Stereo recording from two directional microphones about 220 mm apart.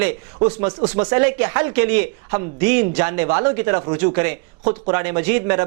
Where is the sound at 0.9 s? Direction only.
15° right (ahead or behind).